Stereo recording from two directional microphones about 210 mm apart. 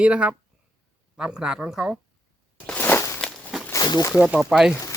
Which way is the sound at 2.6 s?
10° left (ahead or behind).